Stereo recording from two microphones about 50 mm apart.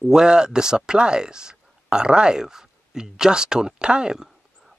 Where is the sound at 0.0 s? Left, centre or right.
Centre.